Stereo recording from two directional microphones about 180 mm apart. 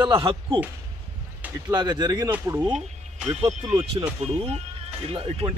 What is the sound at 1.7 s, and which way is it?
Speech, 25° right (ahead or behind).